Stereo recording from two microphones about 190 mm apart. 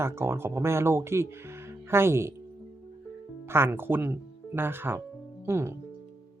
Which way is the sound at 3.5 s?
10° right (ahead or behind).